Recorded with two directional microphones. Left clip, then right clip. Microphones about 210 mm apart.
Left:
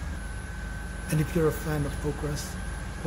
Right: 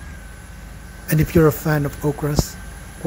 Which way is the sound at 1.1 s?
40° right (ahead or behind).